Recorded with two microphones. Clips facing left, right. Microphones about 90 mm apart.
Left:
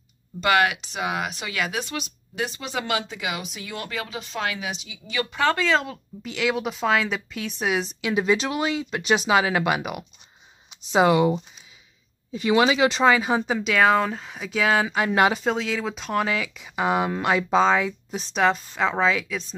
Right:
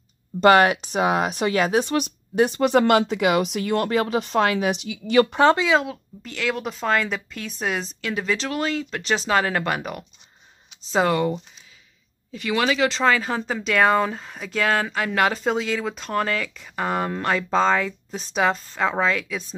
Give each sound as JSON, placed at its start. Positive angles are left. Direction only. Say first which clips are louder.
{"t": 0.4, "sound": "speech", "louder": "right 6 dB", "side_deg": -35}
{"t": 2.0, "sound": "speech", "louder": "right 9 dB", "side_deg": -45}
{"t": 5.3, "sound": "speech", "louder": "right 1 dB", "side_deg": -30}
{"t": 5.6, "sound": "speech", "louder": "right 2 dB", "side_deg": -5}
{"t": 8.0, "sound": "speech", "louder": "left 4 dB", "side_deg": 15}
{"t": 13.6, "sound": "speech", "louder": "right 2 dB", "side_deg": 0}
{"t": 15.0, "sound": "speech", "louder": "left 2 dB", "side_deg": 15}
{"t": 15.4, "sound": "speech", "louder": "right 1 dB", "side_deg": 0}